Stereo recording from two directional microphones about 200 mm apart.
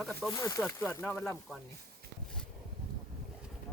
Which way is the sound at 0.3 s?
15° left (ahead or behind).